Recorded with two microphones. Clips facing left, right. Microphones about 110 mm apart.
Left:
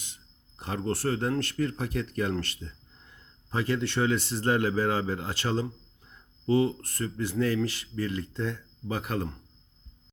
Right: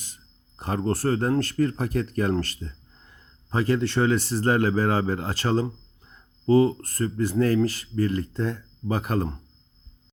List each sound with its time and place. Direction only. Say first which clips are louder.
0.0 s speech: right 2 dB; 40° right (ahead or behind)